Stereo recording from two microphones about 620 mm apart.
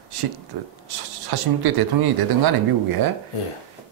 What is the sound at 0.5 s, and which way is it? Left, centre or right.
Speech, right.